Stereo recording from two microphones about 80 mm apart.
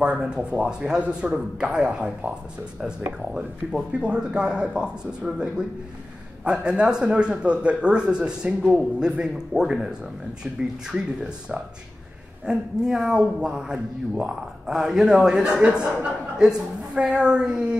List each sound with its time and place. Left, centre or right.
0.2 s speech: centre